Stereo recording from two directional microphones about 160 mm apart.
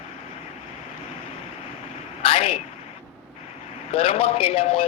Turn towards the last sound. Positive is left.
turn(degrees=35)  # may be behind; listen again after turning